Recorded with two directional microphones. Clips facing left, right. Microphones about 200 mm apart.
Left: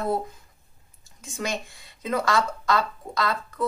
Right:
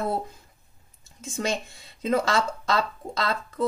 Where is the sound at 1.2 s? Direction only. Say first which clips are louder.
Right 2 dB; 25° right (ahead or behind).